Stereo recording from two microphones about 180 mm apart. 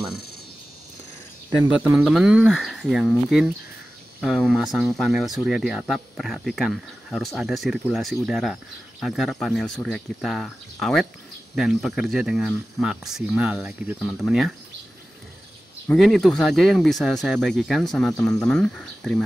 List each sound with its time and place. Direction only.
1.6 s speech: 10° right (ahead or behind)
15.9 s speech: centre (ahead or behind)